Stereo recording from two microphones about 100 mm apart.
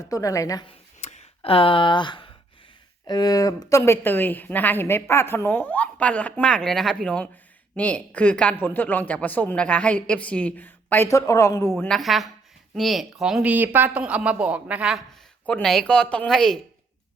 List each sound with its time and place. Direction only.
0.0 s speech: 35° left (ahead or behind)
1.0 s a sound: 65° left (ahead or behind)
3.1 s a woman's voice: 40° left (ahead or behind); by 11.1 s 20° left (ahead or behind)
11.1 s speech: 30° left (ahead or behind)
11.9 s a woman's voice: centre (ahead or behind)
13.5 s a woman's voice: 15° right (ahead or behind)
15.6 s a woman's voice: 5° left (ahead or behind)